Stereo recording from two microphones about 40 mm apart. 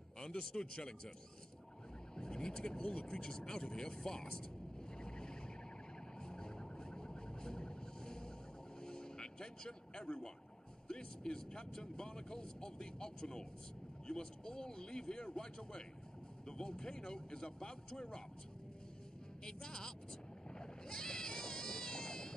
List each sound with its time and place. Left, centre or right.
0.2 s speech: left
2.1 s speech: centre
4.9 s a sound: centre
8.8 s vehicle: centre
10.9 s speech: centre
19.4 s speech: centre
20.5 s a sound: centre